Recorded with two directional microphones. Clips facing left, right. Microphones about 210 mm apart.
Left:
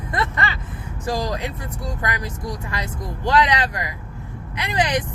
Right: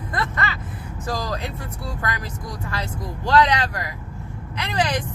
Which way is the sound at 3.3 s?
15° left (ahead or behind).